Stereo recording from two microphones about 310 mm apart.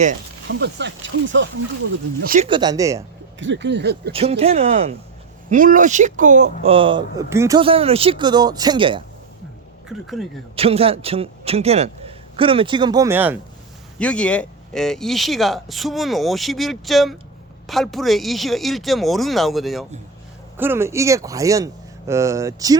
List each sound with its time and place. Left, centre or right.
0.4 s speech: right
2.2 s speech: right
2.5 s speech: centre
3.3 s speech: right
4.1 s speech: centre
9.9 s speech: centre
10.5 s speech: centre
14.0 s speech: centre